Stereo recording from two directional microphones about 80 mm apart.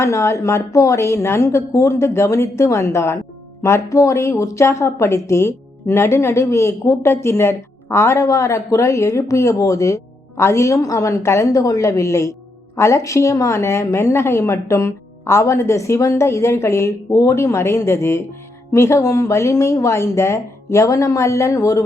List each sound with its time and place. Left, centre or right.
0.0 s a woman's voice: left